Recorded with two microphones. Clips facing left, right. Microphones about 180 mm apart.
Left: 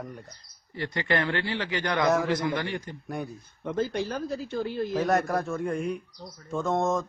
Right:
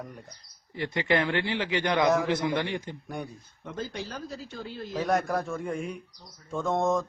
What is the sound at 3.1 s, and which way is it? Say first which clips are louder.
Speech: left 3 dB; centre (ahead or behind).